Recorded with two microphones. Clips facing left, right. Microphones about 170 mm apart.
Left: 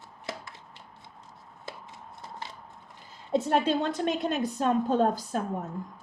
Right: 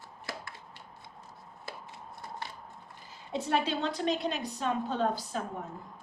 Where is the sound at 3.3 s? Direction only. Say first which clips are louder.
Left 5 dB; 50° left (ahead or behind).